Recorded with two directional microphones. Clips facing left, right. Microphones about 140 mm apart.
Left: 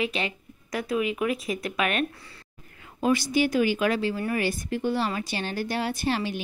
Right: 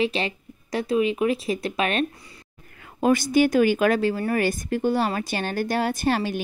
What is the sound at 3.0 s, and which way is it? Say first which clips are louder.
A woman's voice: right 4 dB; 50° right (ahead or behind).